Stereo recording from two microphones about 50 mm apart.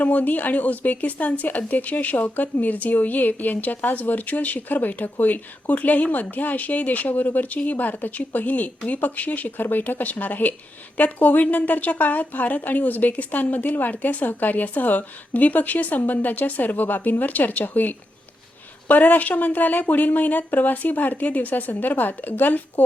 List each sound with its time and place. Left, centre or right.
0.0 s a woman's voice: left